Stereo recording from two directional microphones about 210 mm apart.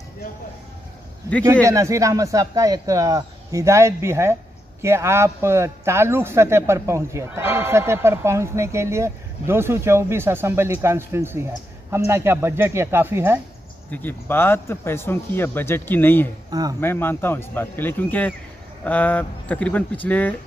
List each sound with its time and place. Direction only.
1.7 s a man's voice: 15° right (ahead or behind)
13.8 s speech: 10° left (ahead or behind)
16.4 s speech: 15° right (ahead or behind)
16.8 s speech: 10° left (ahead or behind)